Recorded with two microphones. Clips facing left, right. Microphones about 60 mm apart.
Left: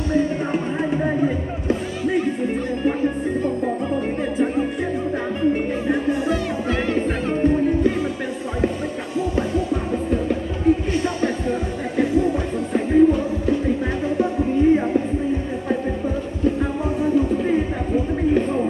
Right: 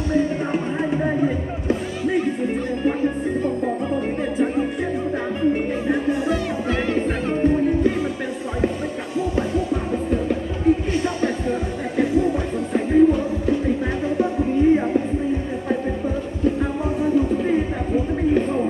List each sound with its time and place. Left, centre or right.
0.1 s music: centre
10.2 s music: centre
17.5 s a sound: centre